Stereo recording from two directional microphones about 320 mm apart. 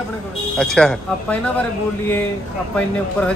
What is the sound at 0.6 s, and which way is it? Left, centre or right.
Speech, centre.